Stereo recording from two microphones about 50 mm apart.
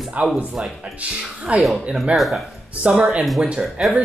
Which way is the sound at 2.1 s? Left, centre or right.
Centre.